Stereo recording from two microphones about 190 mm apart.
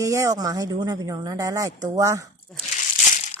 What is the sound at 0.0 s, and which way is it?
Speech, 15° right (ahead or behind).